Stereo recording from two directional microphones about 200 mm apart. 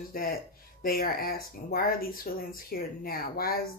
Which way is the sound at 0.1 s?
45° left (ahead or behind).